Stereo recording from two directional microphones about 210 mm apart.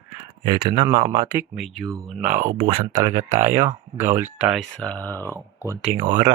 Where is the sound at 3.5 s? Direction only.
15° right (ahead or behind); by 5.3 s 10° left (ahead or behind).